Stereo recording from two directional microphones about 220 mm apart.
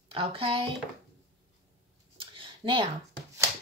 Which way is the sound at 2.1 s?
25° right (ahead or behind).